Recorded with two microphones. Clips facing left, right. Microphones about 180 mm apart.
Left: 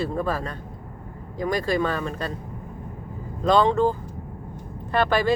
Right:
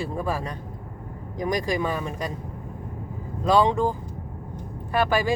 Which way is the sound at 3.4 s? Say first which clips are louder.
Left 1 dB; 10° right (ahead or behind).